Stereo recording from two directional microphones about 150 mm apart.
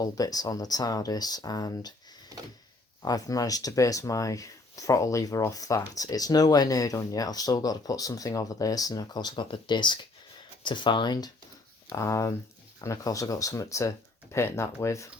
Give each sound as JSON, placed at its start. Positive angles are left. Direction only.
{"t": 0.0, "sound": "speech", "side_deg": 25}
{"t": 3.0, "sound": "speech", "side_deg": 25}